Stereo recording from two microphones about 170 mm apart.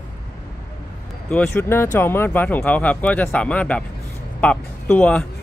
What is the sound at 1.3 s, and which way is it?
Speech, 10° left (ahead or behind).